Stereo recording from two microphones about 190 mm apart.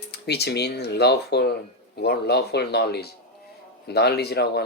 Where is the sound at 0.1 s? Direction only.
60° left (ahead or behind).